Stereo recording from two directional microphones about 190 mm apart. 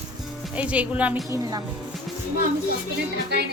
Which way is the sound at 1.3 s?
20° right (ahead or behind).